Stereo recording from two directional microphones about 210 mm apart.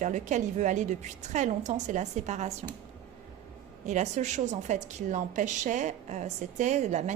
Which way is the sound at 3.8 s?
35° right (ahead or behind).